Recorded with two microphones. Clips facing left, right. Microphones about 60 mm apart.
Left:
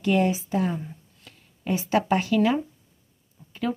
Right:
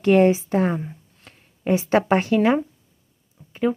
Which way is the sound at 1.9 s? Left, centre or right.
Right.